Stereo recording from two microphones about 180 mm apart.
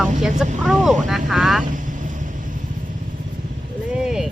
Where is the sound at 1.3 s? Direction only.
Centre (ahead or behind).